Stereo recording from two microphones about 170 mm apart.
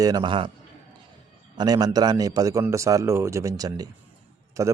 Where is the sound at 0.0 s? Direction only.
25° right (ahead or behind).